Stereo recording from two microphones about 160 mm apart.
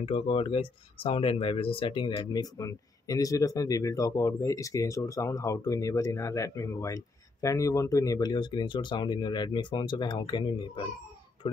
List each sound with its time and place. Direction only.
0.0 s speech: 35° left (ahead or behind)